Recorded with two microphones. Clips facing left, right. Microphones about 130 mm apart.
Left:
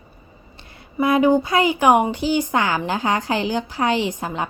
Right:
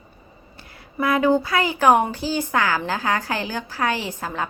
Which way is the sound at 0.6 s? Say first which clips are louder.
Left 4 dB; 20° left (ahead or behind).